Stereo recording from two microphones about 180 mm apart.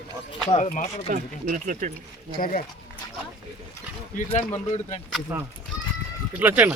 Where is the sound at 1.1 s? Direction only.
45° right (ahead or behind).